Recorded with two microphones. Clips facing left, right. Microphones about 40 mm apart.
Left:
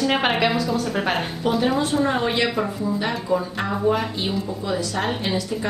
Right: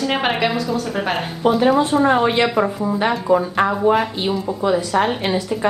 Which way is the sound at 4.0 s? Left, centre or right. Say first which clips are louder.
Right 5 dB; centre.